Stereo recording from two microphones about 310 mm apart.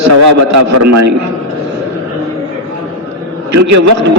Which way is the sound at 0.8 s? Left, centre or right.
Right.